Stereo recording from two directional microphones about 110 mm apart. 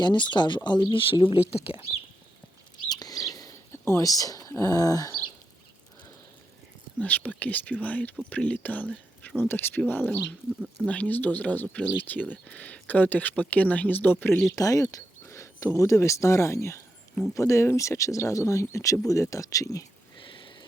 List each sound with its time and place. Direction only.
0.0 s speech: 45° left (ahead or behind); by 1.8 s 65° left (ahead or behind)
2.9 s bird: 35° left (ahead or behind)
3.7 s speech: 25° left (ahead or behind)
7.0 s speech: 15° left (ahead or behind)
14.5 s speech: 30° left (ahead or behind)
20.2 s a sound: 50° left (ahead or behind)